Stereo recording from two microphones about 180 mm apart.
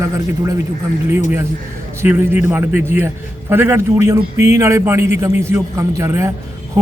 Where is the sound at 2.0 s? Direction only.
10° right (ahead or behind).